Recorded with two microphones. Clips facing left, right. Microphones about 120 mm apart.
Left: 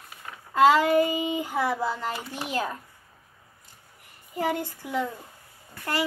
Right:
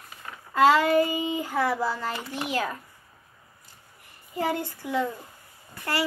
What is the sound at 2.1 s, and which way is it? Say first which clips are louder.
Speech: right 1 dB; 5° left (ahead or behind).